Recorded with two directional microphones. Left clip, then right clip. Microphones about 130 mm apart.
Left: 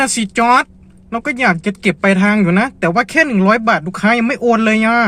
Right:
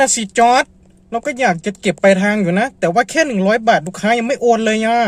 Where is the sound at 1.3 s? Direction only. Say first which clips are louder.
Left 2 dB; 20° right (ahead or behind).